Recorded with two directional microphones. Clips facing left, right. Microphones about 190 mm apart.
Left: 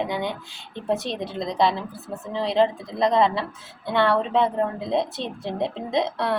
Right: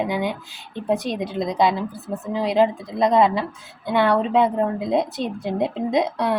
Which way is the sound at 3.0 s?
20° right (ahead or behind).